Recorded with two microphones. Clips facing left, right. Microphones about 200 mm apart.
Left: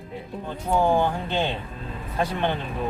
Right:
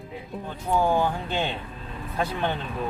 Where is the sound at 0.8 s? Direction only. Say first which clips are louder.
Left 2 dB; 20° left (ahead or behind).